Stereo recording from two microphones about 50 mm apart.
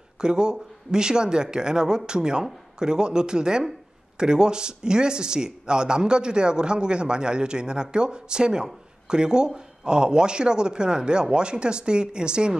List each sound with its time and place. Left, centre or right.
0.2 s speech: centre